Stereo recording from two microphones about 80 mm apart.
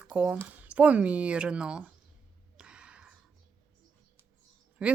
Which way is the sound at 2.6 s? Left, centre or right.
Centre.